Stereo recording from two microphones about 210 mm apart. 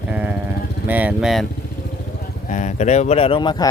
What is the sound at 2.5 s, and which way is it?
Speech, 35° left (ahead or behind).